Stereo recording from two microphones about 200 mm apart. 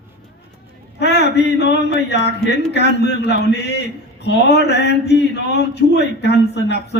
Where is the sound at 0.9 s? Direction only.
55° left (ahead or behind).